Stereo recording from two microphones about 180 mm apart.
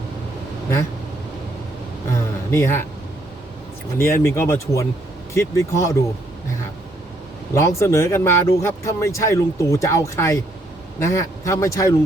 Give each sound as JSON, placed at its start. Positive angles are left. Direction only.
{"t": 2.5, "sound": "speech", "side_deg": 15}
{"t": 3.9, "sound": "speech", "side_deg": 15}
{"t": 7.5, "sound": "speech", "side_deg": 15}